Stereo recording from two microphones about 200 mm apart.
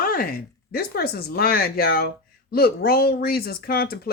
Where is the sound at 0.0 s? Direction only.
45° left (ahead or behind).